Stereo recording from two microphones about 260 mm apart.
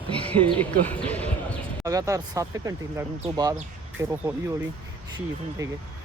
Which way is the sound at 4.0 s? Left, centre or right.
Centre.